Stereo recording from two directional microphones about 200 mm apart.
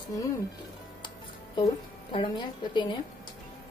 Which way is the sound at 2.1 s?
25° left (ahead or behind).